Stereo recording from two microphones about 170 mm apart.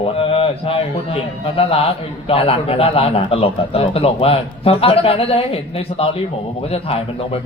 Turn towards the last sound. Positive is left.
turn(degrees=35)  # may be behind; listen again after turning